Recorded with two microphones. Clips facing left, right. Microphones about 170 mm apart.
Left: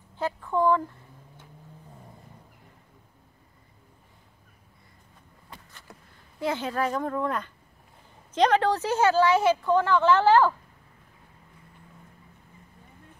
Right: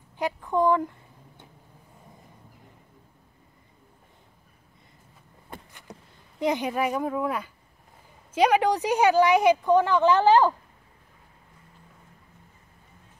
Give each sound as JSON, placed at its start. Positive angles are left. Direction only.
{"t": 0.2, "sound": "a woman's voice", "side_deg": -15}
{"t": 5.7, "sound": "a sound", "side_deg": -15}
{"t": 6.4, "sound": "a woman's voice", "side_deg": -15}